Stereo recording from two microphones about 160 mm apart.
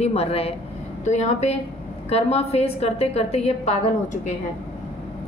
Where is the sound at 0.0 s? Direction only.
40° left (ahead or behind).